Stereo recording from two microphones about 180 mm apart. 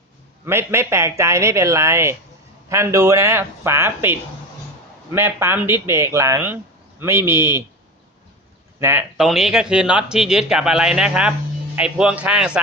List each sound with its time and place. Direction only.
0.4 s speech: 15° right (ahead or behind)
8.8 s speech: 10° right (ahead or behind)